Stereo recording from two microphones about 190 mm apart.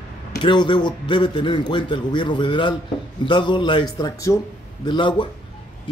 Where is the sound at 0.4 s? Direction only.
25° left (ahead or behind).